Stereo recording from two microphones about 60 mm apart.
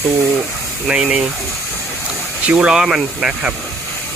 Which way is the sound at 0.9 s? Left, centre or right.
Centre.